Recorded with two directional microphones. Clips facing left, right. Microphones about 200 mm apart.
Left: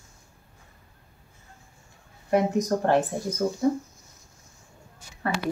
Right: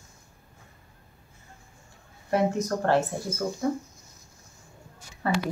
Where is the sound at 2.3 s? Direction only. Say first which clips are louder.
Left 2 dB; 15° left (ahead or behind).